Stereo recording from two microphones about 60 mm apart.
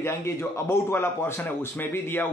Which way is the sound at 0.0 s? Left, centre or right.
Left.